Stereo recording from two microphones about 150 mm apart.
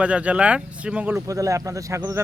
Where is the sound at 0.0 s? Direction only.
10° right (ahead or behind).